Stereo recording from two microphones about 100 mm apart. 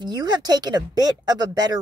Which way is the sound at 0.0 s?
45° right (ahead or behind).